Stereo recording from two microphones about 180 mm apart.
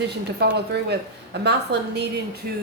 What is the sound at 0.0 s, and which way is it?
Speech, 70° right (ahead or behind).